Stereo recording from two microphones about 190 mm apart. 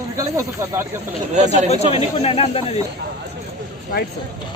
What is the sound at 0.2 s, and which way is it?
Speech, 15° right (ahead or behind).